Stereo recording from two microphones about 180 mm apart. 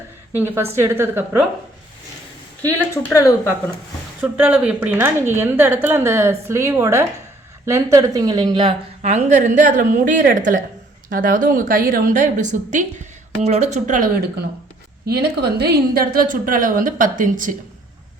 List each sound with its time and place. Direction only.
0.3 s a woman's voice: 15° right (ahead or behind)
2.6 s speech: 10° left (ahead or behind)
4.2 s a woman's voice: 10° right (ahead or behind); by 8.7 s 25° right (ahead or behind)
9.0 s a woman's voice: 40° right (ahead or behind)